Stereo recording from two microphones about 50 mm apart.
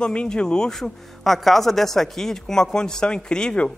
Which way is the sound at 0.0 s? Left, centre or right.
Left.